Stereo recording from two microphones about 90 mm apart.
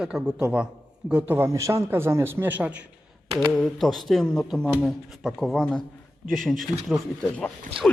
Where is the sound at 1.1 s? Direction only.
25° right (ahead or behind).